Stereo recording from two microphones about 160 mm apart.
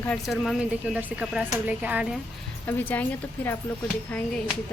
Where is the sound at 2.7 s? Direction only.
10° left (ahead or behind).